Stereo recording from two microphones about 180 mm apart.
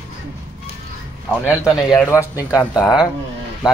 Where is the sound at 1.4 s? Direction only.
15° left (ahead or behind).